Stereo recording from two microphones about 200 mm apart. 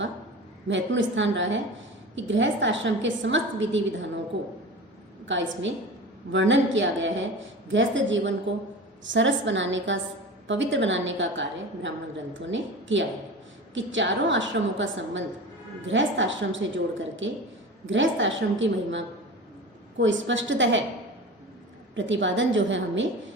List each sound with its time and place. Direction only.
0.7 s a woman's voice: 65° right (ahead or behind)
5.2 s a woman's voice: 70° right (ahead or behind)
21.9 s a woman's voice: 65° right (ahead or behind)